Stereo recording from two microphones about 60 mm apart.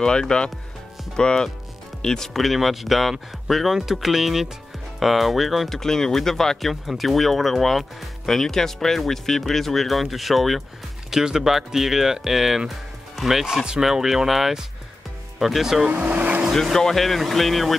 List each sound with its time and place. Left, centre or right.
0.0 s speech: centre
15.9 s speech: right
16.7 s speech: centre